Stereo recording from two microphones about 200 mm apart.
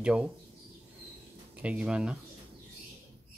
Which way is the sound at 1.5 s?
5° right (ahead or behind).